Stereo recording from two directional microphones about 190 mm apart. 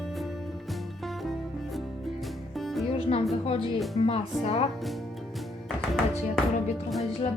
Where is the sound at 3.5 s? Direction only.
30° left (ahead or behind).